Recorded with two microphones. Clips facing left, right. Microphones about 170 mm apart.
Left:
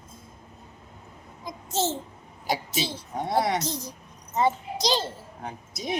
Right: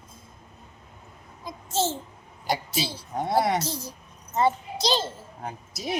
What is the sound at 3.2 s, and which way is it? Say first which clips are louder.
Speech: right 2 dB; centre (ahead or behind).